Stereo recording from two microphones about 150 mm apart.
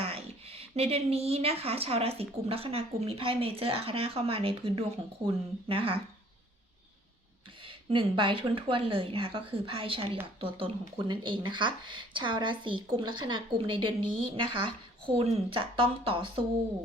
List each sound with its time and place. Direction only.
0.0 s speech: 40° right (ahead or behind)
7.6 s speech: 35° right (ahead or behind)